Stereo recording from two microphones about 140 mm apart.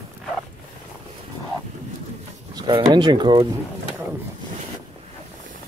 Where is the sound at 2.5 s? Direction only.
35° right (ahead or behind).